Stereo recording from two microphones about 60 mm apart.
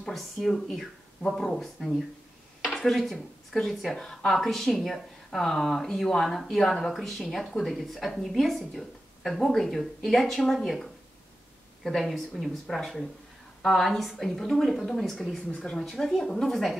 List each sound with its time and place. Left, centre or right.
0.0 s speech: centre
12.0 s speech: centre
15.5 s speech: centre
15.8 s speech: centre